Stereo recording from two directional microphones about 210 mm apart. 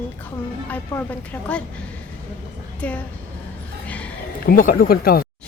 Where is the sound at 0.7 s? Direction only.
10° left (ahead or behind).